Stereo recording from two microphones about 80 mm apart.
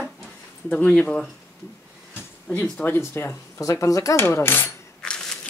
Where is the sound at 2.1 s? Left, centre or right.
Centre.